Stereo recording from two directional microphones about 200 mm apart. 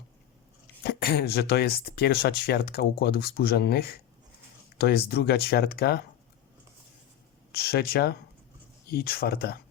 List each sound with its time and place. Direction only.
0.9 s speech: 50° left (ahead or behind)
7.5 s speech: 50° left (ahead or behind)